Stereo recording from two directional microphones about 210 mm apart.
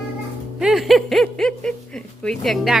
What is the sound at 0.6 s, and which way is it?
Speech, centre (ahead or behind).